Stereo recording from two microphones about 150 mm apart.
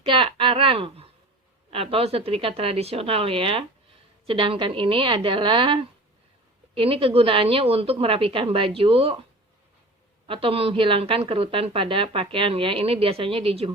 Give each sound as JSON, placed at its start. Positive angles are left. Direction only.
{"t": 0.0, "sound": "a sound", "side_deg": -35}
{"t": 1.7, "sound": "a woman's voice", "side_deg": -40}
{"t": 10.2, "sound": "a woman's voice", "side_deg": -35}